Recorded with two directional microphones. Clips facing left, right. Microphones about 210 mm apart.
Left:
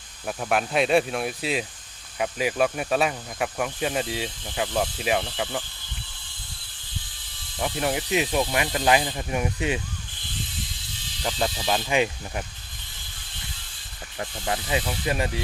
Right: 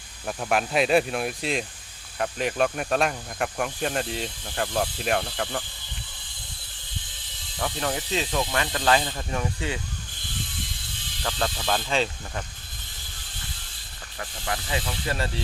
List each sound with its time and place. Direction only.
0.3 s speech: centre (ahead or behind)
7.6 s speech: 15° left (ahead or behind)
11.2 s speech: 15° left (ahead or behind)
14.2 s speech: 25° left (ahead or behind)